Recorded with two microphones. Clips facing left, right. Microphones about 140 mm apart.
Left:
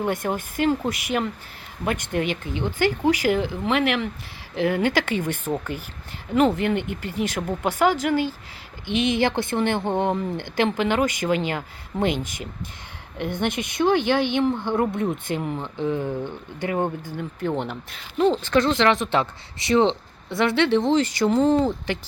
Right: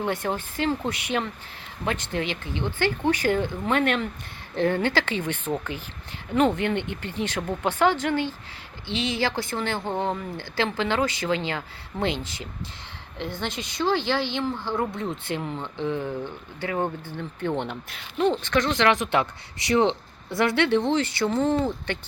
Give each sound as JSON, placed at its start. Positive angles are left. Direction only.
{"t": 0.0, "sound": "speech", "side_deg": 10}
{"t": 2.1, "sound": "speech", "side_deg": 45}
{"t": 2.4, "sound": "speech", "side_deg": 15}
{"t": 13.1, "sound": "a woman's voice", "side_deg": 50}
{"t": 13.4, "sound": "speech", "side_deg": 20}
{"t": 18.3, "sound": "speech", "side_deg": 35}
{"t": 20.8, "sound": "speech", "side_deg": 40}